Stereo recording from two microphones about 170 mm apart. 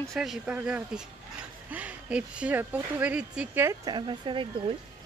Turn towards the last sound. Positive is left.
turn(degrees=-30)  # may be behind; listen again after turning